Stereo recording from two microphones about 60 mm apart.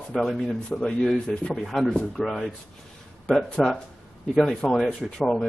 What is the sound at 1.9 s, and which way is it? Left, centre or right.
Speech, centre.